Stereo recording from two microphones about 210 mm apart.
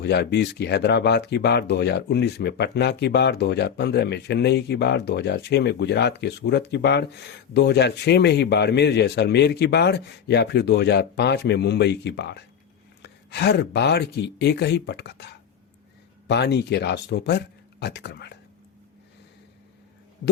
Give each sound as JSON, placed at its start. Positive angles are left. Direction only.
{"t": 0.0, "sound": "speech", "side_deg": 50}